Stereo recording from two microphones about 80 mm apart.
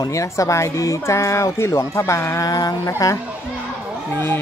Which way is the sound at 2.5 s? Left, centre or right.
Left.